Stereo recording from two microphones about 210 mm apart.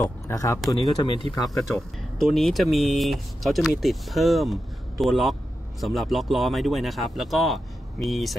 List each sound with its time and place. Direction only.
0.0 s speech: 15° left (ahead or behind)
1.4 s speech: centre (ahead or behind)